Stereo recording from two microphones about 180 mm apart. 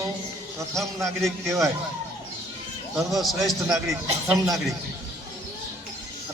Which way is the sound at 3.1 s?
Centre (ahead or behind).